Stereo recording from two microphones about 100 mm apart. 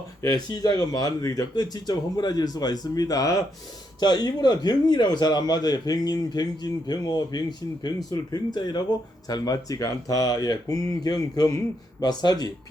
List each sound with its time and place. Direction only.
0.3 s speech: 40° left (ahead or behind)
4.0 s speech: 45° left (ahead or behind)